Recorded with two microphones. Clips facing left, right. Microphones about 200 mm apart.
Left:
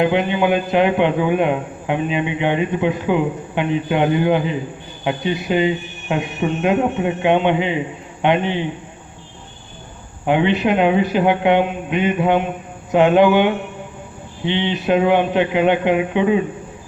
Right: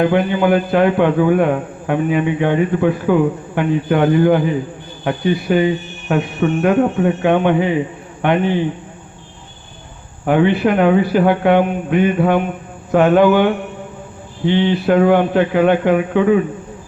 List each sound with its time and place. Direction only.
0.0 s a man's voice: 20° left (ahead or behind)
10.2 s a man's voice: 20° left (ahead or behind)